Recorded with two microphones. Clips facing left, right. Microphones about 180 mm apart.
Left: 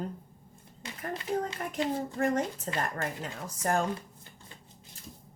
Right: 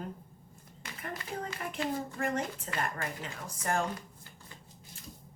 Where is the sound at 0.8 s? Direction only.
25° left (ahead or behind).